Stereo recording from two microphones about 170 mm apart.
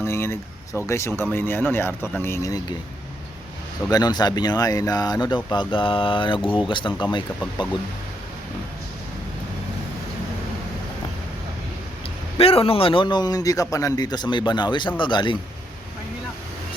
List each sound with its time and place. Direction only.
0.0 s speech: 15° left (ahead or behind)
3.8 s a man's voice: 25° left (ahead or behind)
12.4 s a man's voice: 35° left (ahead or behind)